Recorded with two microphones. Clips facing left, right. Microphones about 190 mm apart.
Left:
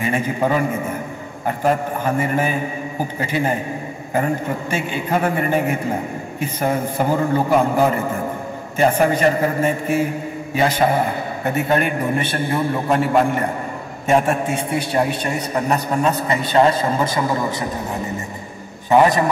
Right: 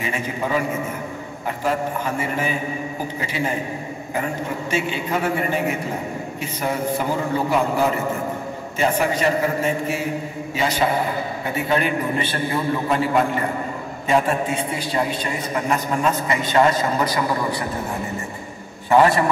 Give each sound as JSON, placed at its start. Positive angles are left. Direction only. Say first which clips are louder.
{"t": 0.0, "sound": "a man's voice", "louder": "left 6 dB", "side_deg": 50}
{"t": 11.4, "sound": "a man's voice", "louder": "left 4 dB", "side_deg": 50}
{"t": 15.5, "sound": "a man's voice", "louder": "left 2 dB", "side_deg": 40}
{"t": 18.9, "sound": "a man's voice", "louder": "left 1 dB", "side_deg": 20}